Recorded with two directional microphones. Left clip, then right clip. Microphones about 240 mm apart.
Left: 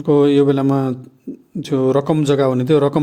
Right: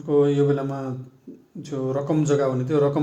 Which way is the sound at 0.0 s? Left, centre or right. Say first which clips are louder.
Left 6 dB; left.